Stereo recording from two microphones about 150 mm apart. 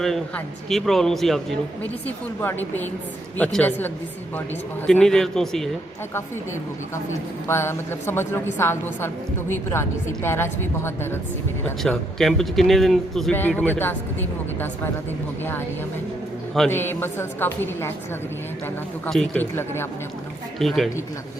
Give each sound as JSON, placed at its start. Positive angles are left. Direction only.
{"t": 0.0, "sound": "speech", "side_deg": 0}
{"t": 2.0, "sound": "a woman's voice", "side_deg": 15}
{"t": 7.4, "sound": "a woman's voice", "side_deg": 15}
{"t": 11.8, "sound": "a woman's voice", "side_deg": 0}
{"t": 16.6, "sound": "a woman's voice", "side_deg": 15}
{"t": 19.0, "sound": "speech", "side_deg": 5}
{"t": 19.5, "sound": "a woman's voice", "side_deg": 15}
{"t": 20.6, "sound": "speech", "side_deg": 0}